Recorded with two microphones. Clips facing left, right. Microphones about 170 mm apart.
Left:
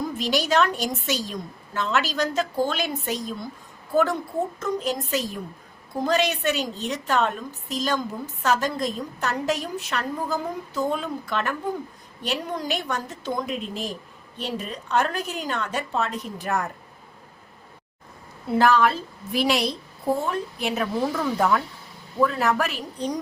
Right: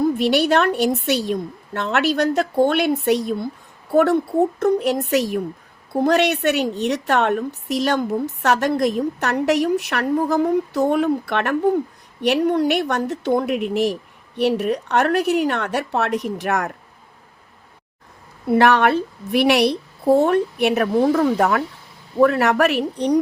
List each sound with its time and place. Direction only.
0.0 s a woman's voice: 60° right (ahead or behind)
18.5 s a woman's voice: 65° right (ahead or behind)